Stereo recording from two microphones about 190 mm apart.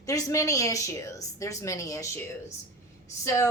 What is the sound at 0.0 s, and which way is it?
A woman's voice, 15° left (ahead or behind).